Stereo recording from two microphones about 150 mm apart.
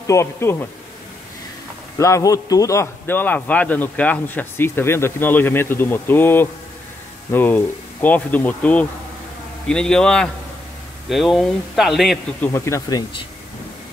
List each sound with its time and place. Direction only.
0.0 s speech: 20° left (ahead or behind)
2.0 s a man's voice: 20° left (ahead or behind); by 12.4 s centre (ahead or behind)
12.5 s speech: 20° left (ahead or behind)